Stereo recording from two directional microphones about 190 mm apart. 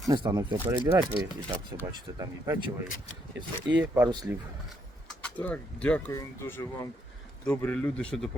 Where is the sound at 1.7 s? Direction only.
20° right (ahead or behind).